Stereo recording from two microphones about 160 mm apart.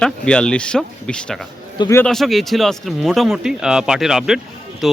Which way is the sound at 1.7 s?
25° left (ahead or behind).